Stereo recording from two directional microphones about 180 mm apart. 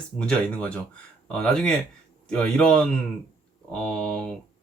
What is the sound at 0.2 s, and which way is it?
Speech, 5° left (ahead or behind).